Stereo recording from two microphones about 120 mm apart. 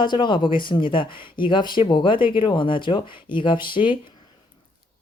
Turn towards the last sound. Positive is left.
turn(degrees=40)  # may be behind; listen again after turning